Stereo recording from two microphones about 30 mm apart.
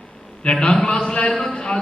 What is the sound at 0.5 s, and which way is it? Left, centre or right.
A man's voice, left.